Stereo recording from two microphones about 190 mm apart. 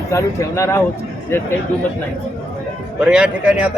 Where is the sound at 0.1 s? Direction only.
15° left (ahead or behind).